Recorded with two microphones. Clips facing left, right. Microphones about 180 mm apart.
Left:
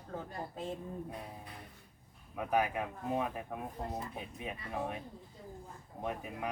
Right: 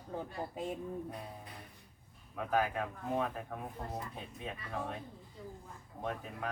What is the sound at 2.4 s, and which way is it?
A man's voice, 15° left (ahead or behind).